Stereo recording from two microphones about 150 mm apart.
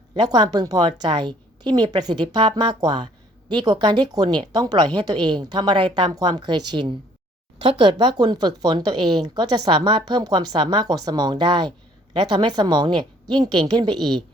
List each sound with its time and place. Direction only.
0.1 s speech: 25° right (ahead or behind)